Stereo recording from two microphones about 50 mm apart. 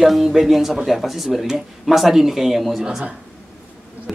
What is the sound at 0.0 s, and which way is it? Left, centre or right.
Speech, centre.